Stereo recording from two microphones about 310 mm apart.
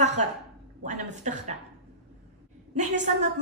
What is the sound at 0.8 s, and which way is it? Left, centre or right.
Speech, right.